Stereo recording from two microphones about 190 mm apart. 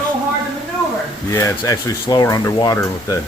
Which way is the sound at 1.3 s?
15° left (ahead or behind).